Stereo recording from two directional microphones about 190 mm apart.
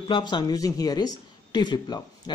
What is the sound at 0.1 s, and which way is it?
A man's voice, 25° left (ahead or behind).